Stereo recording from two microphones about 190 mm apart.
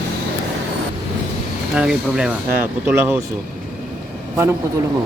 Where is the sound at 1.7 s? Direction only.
5° right (ahead or behind).